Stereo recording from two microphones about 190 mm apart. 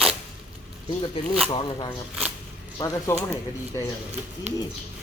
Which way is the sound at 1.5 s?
25° left (ahead or behind).